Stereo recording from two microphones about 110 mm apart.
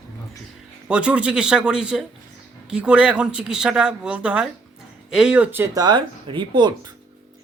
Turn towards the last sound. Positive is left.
turn(degrees=-45)  # may be behind; listen again after turning